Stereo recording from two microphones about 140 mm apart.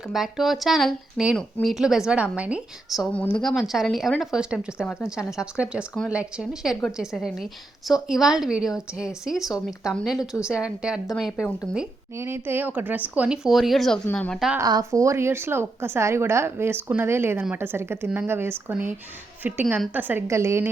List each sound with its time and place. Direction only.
0.1 s a woman's voice: centre (ahead or behind)
3.1 s a woman's voice: 10° left (ahead or behind)
3.4 s a woman's voice: centre (ahead or behind)
12.1 s a woman's voice: 15° right (ahead or behind); by 14.5 s 5° left (ahead or behind)
14.6 s a woman's voice: 25° right (ahead or behind)